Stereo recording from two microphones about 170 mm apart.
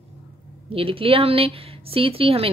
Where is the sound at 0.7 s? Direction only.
30° right (ahead or behind).